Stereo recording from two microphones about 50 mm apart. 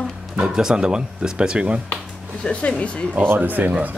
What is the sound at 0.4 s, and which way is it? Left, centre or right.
Speech, centre.